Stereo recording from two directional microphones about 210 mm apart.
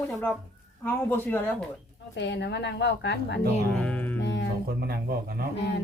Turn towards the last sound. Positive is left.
turn(degrees=55)  # may be behind; listen again after turning